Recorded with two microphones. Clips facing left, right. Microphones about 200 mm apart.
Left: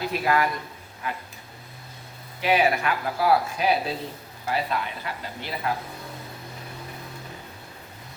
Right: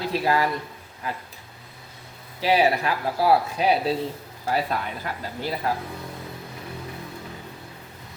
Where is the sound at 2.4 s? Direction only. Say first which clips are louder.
Right 1 dB; 35° right (ahead or behind).